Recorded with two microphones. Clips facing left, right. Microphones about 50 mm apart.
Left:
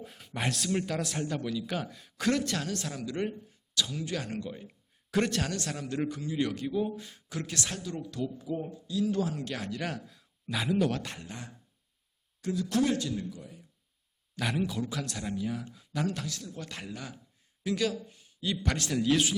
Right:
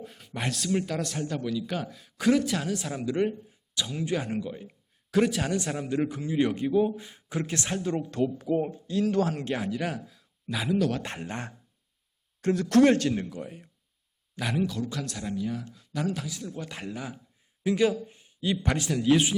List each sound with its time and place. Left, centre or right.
0.0 s a man's voice: centre
3.8 s a man's voice: right; by 5.5 s centre
5.5 s a man's voice: centre; by 8.3 s right
8.4 s speech: right
9.6 s speech: centre
11.0 s speech: right
14.3 s a man's voice: centre
14.7 s a man's voice: centre
17.6 s a sound: right
18.6 s speech: centre